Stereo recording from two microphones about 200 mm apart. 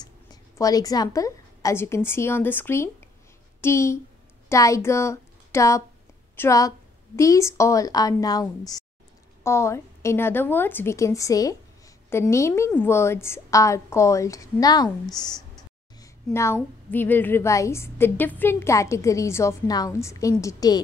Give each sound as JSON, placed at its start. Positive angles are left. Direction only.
{"t": 0.0, "sound": "a woman's voice", "side_deg": 20}